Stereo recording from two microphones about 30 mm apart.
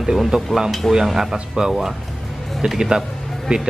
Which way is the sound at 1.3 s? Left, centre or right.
Right.